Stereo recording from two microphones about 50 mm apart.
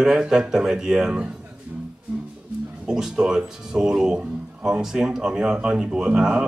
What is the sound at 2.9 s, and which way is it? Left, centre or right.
Speech, centre.